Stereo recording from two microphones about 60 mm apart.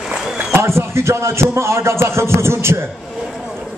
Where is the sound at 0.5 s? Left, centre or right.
Right.